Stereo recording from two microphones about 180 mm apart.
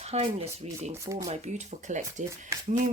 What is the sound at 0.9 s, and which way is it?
Speech, 15° right (ahead or behind).